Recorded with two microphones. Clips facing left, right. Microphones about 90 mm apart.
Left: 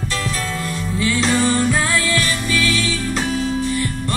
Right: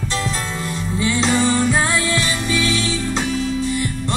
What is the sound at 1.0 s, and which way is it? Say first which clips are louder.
Music: even; 20° right (ahead or behind).